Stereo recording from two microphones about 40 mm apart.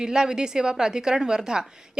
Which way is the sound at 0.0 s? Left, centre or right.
Centre.